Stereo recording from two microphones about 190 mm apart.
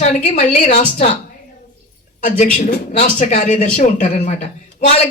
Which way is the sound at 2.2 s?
40° left (ahead or behind).